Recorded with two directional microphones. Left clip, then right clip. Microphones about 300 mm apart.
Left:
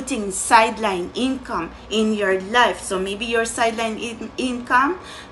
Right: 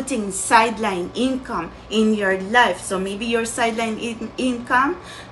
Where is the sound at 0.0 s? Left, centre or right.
Centre.